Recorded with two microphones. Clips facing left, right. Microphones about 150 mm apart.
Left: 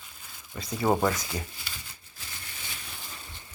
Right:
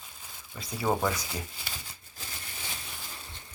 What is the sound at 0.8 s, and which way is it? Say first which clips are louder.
Speech: left 3 dB; 15° left (ahead or behind).